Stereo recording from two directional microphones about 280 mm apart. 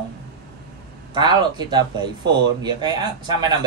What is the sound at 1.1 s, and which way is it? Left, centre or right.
Speech, centre.